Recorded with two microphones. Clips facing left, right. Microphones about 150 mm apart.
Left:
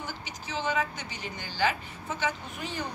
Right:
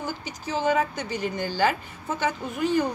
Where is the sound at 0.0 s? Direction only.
45° right (ahead or behind).